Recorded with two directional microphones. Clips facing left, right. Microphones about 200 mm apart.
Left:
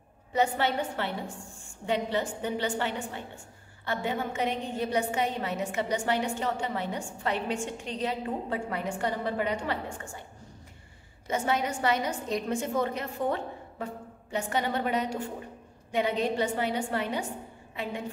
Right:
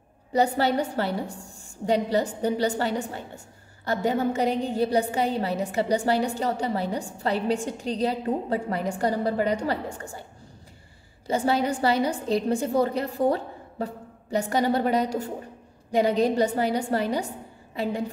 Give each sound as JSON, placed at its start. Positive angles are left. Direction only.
{"t": 0.3, "sound": "a woman's voice", "side_deg": -35}
{"t": 11.2, "sound": "a woman's voice", "side_deg": -35}